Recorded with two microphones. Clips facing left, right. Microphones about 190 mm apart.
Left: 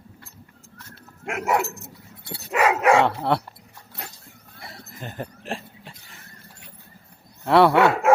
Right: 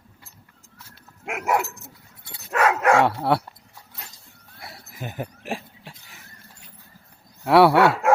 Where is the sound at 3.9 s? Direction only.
60° left (ahead or behind).